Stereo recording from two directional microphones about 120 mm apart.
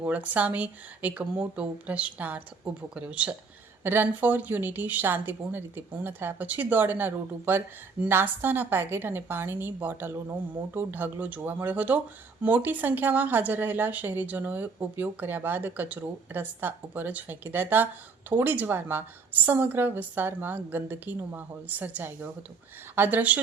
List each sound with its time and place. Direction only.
0.0 s speech: 15° right (ahead or behind)